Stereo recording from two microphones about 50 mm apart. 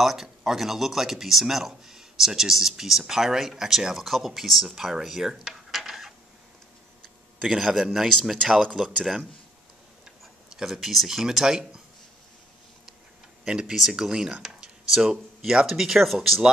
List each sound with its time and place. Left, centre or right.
0.0 s speech: centre
7.0 s a sound: centre
7.9 s speech: centre
10.5 s speech: centre
13.5 s speech: centre